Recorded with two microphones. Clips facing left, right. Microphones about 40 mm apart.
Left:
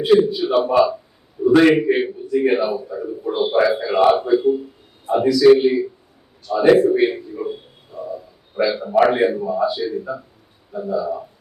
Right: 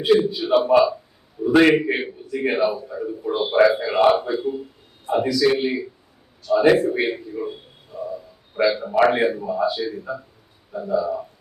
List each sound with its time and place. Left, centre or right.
0.0 s a man's voice: centre
8.5 s a man's voice: centre